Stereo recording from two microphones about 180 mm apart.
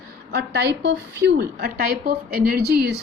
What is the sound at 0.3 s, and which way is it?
A woman's voice, 65° right (ahead or behind).